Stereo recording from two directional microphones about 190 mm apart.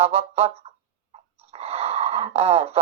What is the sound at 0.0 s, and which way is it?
Speech, 30° right (ahead or behind).